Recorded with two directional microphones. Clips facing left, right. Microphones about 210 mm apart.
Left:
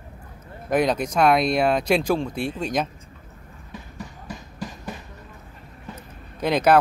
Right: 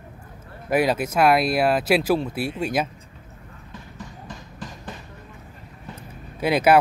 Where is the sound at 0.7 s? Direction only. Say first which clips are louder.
Even; 5° right (ahead or behind).